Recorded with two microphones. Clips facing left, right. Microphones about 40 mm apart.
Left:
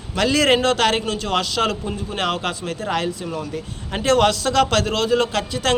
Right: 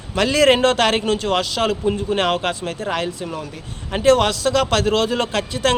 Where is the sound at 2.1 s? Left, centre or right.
Right.